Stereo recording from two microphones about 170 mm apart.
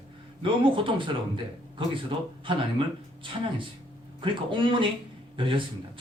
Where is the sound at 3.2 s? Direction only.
30° right (ahead or behind).